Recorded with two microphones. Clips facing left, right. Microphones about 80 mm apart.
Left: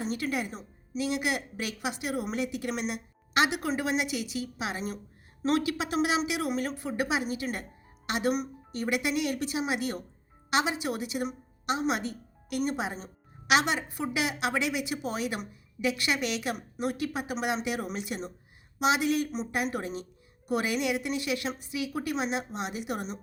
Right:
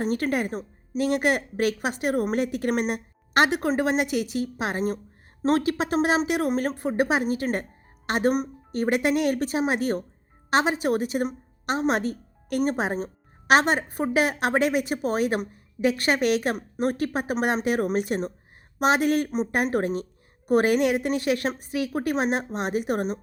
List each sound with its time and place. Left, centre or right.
0.0 s a woman's voice: right